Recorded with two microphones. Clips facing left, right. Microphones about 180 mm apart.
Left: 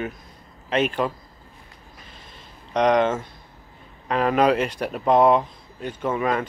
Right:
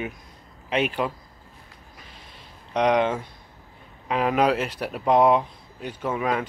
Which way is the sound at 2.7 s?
5° right (ahead or behind).